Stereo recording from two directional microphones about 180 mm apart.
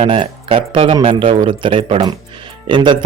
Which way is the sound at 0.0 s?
30° right (ahead or behind).